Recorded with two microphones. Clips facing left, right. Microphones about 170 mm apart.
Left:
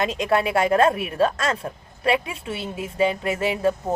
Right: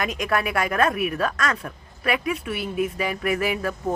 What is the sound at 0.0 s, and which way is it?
A woman's voice, 25° left (ahead or behind).